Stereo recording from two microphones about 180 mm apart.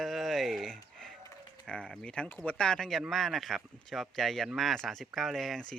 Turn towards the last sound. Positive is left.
turn(degrees=0)  # may be behind; listen again after turning